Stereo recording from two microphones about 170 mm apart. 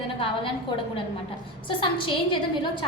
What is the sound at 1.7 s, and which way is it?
Speech, 30° left (ahead or behind).